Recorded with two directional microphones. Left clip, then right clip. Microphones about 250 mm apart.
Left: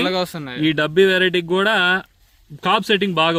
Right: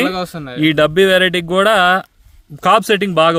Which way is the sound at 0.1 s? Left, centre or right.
Right.